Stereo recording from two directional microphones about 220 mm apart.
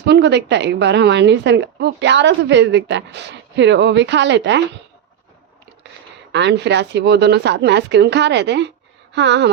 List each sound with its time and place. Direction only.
0.0 s a woman's voice: 50° right (ahead or behind)
6.3 s a woman's voice: 50° right (ahead or behind)